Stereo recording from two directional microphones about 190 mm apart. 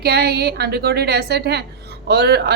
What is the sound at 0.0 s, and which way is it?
A woman's voice, 55° right (ahead or behind).